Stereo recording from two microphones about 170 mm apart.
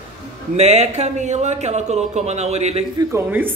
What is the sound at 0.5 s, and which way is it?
Speech, 40° right (ahead or behind).